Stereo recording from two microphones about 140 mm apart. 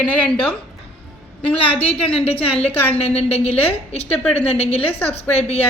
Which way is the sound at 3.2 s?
45° left (ahead or behind).